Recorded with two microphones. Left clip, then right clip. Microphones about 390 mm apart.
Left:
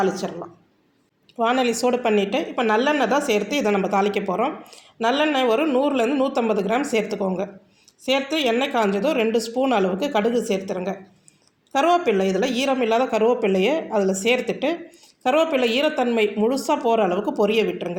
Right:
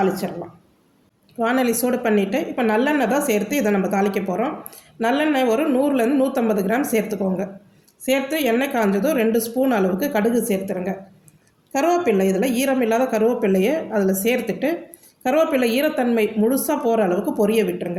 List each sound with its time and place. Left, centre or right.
0.1 s a woman's voice: right
1.4 s a woman's voice: right
12.2 s speech: centre
12.5 s a woman's voice: right